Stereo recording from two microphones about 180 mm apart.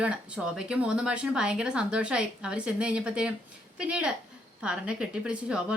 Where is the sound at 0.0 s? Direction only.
5° right (ahead or behind).